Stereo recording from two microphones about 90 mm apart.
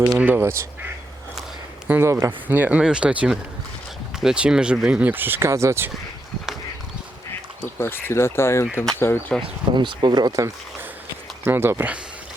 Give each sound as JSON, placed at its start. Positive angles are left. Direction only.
{"t": 0.2, "sound": "speech", "side_deg": -20}
{"t": 1.9, "sound": "speech", "side_deg": -30}
{"t": 7.8, "sound": "speech", "side_deg": 25}
{"t": 9.7, "sound": "speech", "side_deg": -60}
{"t": 11.4, "sound": "speech", "side_deg": -25}